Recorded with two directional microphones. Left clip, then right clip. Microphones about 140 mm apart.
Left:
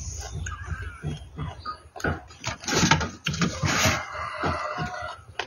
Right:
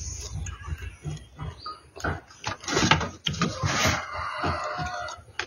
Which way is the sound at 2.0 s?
20° left (ahead or behind).